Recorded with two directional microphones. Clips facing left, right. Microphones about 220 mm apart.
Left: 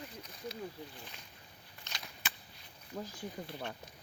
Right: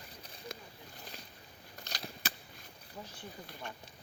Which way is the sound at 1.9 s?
35° right (ahead or behind).